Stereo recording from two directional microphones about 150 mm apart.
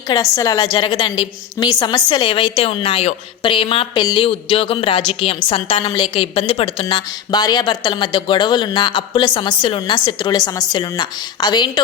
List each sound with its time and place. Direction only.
0.1 s a woman's voice: 20° left (ahead or behind)